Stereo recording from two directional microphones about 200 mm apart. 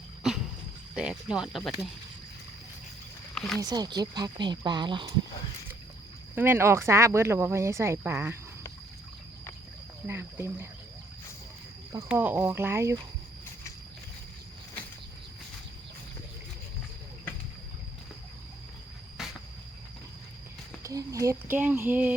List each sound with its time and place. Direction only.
0.9 s speech: 5° right (ahead or behind)
3.3 s speech: 5° left (ahead or behind)
3.6 s speech: 20° right (ahead or behind)
6.3 s speech: 10° right (ahead or behind)
10.1 s speech: 10° right (ahead or behind)
12.0 s speech: 10° right (ahead or behind)
19.2 s cricket: 5° right (ahead or behind)
20.8 s speech: 15° right (ahead or behind)